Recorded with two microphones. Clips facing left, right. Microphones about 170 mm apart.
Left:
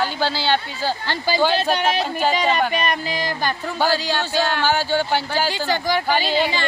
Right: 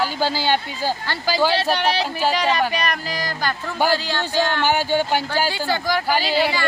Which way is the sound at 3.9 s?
15° left (ahead or behind).